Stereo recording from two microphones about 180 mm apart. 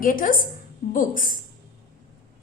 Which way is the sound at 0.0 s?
50° left (ahead or behind).